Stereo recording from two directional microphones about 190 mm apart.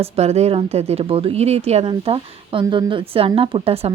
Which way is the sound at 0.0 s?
35° right (ahead or behind).